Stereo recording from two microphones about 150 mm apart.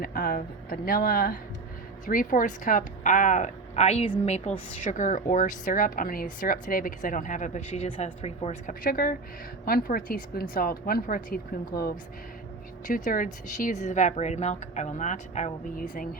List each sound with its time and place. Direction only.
0.0 s a woman's voice: 70° left (ahead or behind); by 8.7 s 45° left (ahead or behind)
8.8 s speech: 75° left (ahead or behind)
11.7 s speech: 90° left
12.9 s speech: 65° left (ahead or behind)
15.7 s a woman's voice: 65° left (ahead or behind)